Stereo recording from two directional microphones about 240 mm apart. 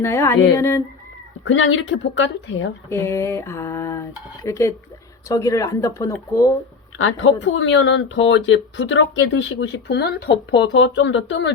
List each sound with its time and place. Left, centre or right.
0.0 s speech: centre
1.5 s speech: left
2.9 s speech: centre
7.0 s speech: left